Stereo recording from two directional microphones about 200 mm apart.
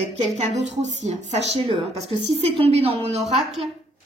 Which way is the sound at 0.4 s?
35° right (ahead or behind).